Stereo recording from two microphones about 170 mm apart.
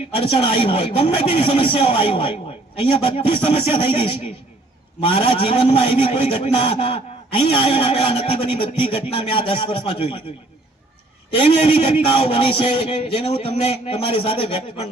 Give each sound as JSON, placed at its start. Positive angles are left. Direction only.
{"t": 0.3, "sound": "speech", "side_deg": 35}
{"t": 11.6, "sound": "speech", "side_deg": 35}